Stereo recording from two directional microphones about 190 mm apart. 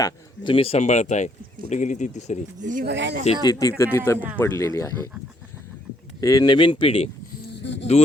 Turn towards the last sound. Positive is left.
turn(degrees=65)  # may be behind; listen again after turning